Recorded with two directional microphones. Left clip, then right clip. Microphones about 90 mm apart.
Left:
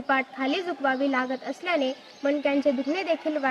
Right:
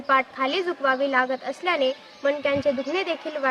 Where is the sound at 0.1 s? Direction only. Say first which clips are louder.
Right 4 dB; 10° right (ahead or behind).